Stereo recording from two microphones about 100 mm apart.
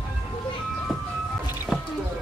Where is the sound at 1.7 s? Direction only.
5° right (ahead or behind).